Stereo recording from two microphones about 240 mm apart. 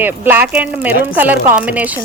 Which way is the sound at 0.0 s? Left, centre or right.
Centre.